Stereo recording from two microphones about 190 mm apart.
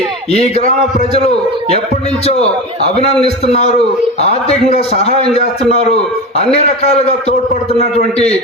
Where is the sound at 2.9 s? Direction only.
35° left (ahead or behind).